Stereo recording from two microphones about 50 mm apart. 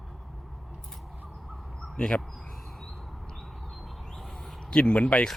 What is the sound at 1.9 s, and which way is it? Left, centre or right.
Speech, centre.